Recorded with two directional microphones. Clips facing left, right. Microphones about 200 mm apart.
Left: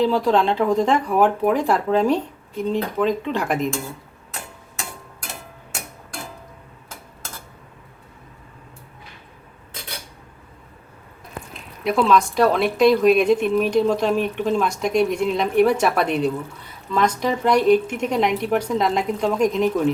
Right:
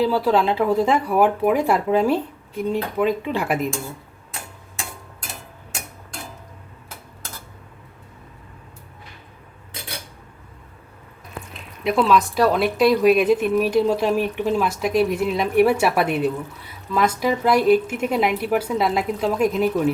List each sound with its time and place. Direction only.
0.0 s speech: 5° right (ahead or behind)
11.8 s speech: centre (ahead or behind)